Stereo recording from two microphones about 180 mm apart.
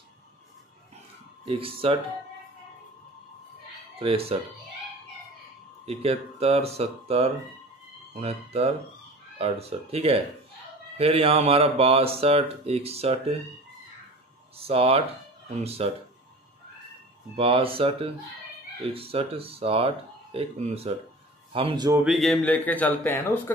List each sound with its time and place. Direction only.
1.5 s speech: 30° right (ahead or behind)
4.0 s speech: 30° right (ahead or behind)
5.9 s speech: 35° right (ahead or behind)
14.6 s speech: 35° right (ahead or behind)
17.4 s speech: 30° right (ahead or behind)
21.9 s speech: centre (ahead or behind)